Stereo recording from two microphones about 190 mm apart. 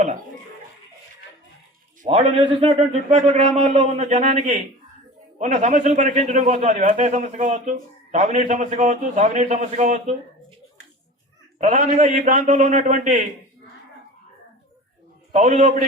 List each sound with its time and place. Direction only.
2.0 s a man's voice: 30° right (ahead or behind)
11.6 s a man's voice: 40° right (ahead or behind)
15.3 s a man's voice: 40° right (ahead or behind)